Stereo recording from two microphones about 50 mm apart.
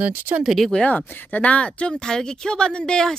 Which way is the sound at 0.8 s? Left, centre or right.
Left.